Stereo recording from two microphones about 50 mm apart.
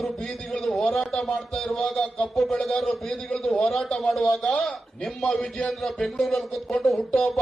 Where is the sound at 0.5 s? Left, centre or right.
Centre.